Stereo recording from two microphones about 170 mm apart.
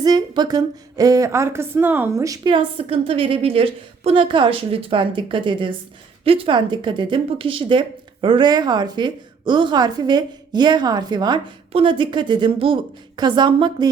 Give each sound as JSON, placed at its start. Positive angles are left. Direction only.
{"t": 0.0, "sound": "a woman's voice", "side_deg": -25}